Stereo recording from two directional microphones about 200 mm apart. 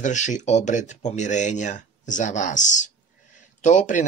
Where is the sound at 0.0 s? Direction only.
35° left (ahead or behind).